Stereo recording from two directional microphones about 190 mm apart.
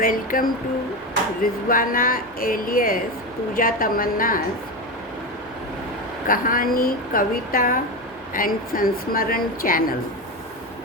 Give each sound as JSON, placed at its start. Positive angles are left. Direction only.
{"t": 0.0, "sound": "a woman's voice", "side_deg": 45}
{"t": 6.2, "sound": "a woman's voice", "side_deg": 45}